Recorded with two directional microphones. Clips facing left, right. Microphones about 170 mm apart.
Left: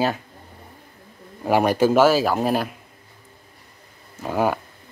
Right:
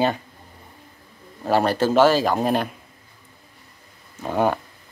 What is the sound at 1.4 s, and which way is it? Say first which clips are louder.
A man's voice: left 2 dB; 15° left (ahead or behind).